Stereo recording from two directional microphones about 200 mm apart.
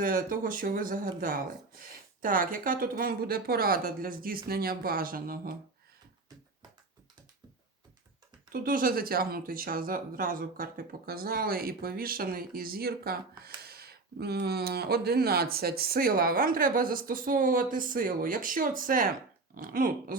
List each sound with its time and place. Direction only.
0.0 s speech: 45° right (ahead or behind)
8.5 s speech: 45° right (ahead or behind)